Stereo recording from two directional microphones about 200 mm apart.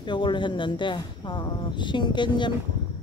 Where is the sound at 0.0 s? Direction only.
25° left (ahead or behind).